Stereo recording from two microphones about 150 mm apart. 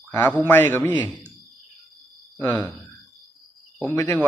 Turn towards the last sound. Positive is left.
turn(degrees=20)  # may be behind; listen again after turning